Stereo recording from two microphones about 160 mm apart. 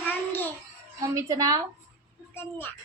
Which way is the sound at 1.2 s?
20° right (ahead or behind).